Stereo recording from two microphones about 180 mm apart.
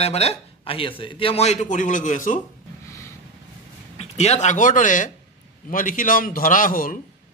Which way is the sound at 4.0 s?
35° left (ahead or behind).